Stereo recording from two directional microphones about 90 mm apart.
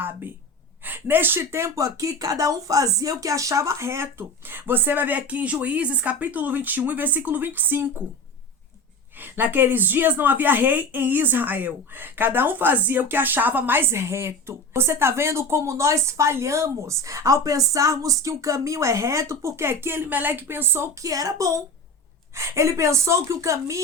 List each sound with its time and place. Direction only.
0.9 s a woman's voice: 20° right (ahead or behind)
9.1 s a woman's voice: 20° right (ahead or behind)
21.0 s a woman's voice: 40° right (ahead or behind)